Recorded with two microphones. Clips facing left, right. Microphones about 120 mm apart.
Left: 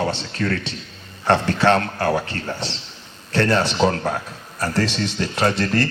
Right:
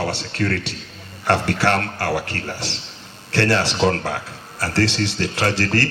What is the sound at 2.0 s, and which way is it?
Speech, 70° right (ahead or behind).